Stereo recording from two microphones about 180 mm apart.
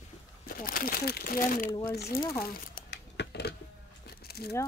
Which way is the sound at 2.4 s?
55° left (ahead or behind).